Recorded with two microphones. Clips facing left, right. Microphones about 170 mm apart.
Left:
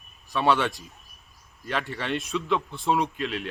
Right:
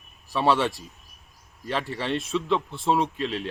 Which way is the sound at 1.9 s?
30° right (ahead or behind).